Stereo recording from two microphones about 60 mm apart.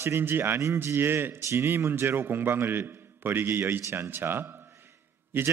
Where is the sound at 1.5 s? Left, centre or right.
Right.